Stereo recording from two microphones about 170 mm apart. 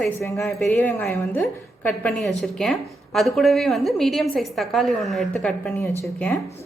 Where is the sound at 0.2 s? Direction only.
15° left (ahead or behind).